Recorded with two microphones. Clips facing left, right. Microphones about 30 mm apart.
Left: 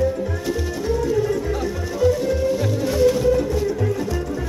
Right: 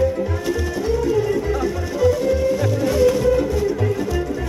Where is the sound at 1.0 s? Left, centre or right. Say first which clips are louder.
Right 1 dB; centre.